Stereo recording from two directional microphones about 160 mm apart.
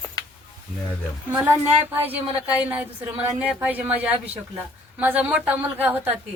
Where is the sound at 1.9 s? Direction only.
10° right (ahead or behind).